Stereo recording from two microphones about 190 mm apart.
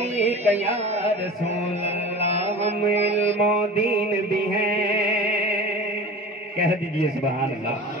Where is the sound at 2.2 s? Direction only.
35° right (ahead or behind).